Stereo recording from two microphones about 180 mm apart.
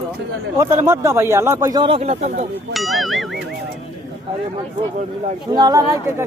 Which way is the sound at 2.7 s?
Centre (ahead or behind).